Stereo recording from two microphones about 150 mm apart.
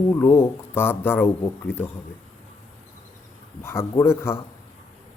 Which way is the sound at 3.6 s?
15° left (ahead or behind).